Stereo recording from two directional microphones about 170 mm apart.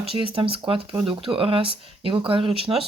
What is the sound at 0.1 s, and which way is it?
Speech, 30° right (ahead or behind).